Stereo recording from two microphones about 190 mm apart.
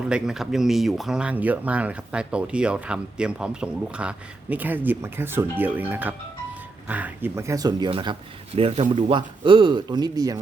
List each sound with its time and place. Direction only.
0.1 s speech: centre (ahead or behind); by 10.4 s 20° right (ahead or behind)